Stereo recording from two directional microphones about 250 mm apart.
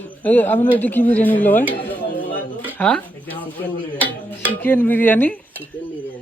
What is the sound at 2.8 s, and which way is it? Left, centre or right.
Speech, centre.